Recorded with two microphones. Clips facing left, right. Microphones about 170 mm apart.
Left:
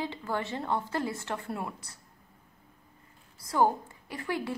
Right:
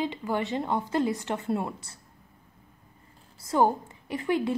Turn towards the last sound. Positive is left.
turn(degrees=-20)  # may be behind; listen again after turning